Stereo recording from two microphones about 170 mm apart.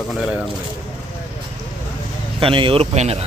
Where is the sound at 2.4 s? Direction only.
30° right (ahead or behind).